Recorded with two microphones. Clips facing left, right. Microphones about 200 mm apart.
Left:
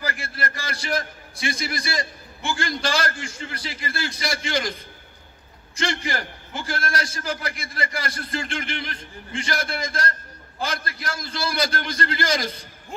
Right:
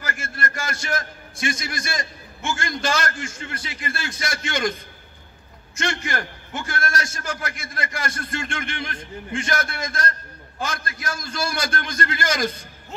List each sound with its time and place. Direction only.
0.0 s a man's voice: 45° right (ahead or behind)
5.9 s a man's voice: 50° right (ahead or behind)